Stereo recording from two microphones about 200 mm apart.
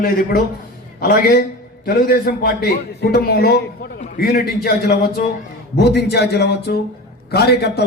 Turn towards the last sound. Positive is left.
turn(degrees=55)  # may be behind; listen again after turning